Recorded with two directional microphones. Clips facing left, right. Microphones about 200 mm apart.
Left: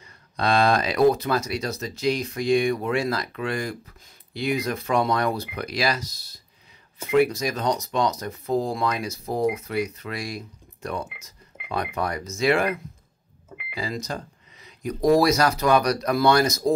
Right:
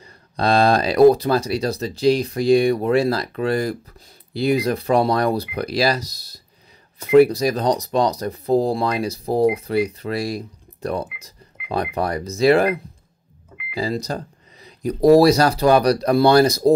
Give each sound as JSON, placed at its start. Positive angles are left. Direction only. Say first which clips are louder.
{"t": 0.0, "sound": "speech", "louder": "right 4 dB", "side_deg": -35}